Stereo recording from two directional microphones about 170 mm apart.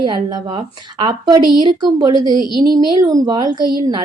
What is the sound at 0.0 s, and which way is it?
A woman's voice, 25° right (ahead or behind).